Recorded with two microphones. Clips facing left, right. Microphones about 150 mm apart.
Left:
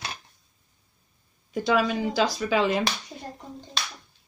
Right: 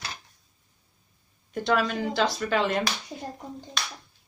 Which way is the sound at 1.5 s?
5° left (ahead or behind).